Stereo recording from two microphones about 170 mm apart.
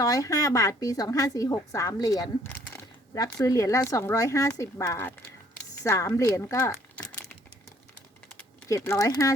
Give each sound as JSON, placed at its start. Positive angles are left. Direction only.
{"t": 0.0, "sound": "a woman's voice", "side_deg": 20}
{"t": 8.7, "sound": "a woman's voice", "side_deg": 15}